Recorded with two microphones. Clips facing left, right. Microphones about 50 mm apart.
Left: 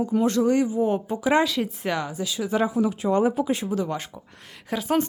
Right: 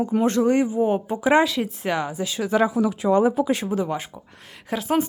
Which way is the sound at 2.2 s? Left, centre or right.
Right.